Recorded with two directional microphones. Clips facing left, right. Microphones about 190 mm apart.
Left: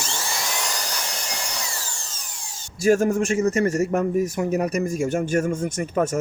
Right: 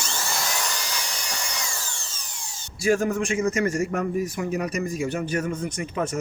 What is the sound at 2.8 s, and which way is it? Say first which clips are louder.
A man's voice: left 4 dB; 45° left (ahead or behind).